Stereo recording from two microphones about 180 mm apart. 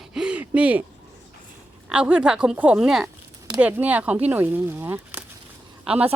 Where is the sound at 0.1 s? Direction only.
5° right (ahead or behind).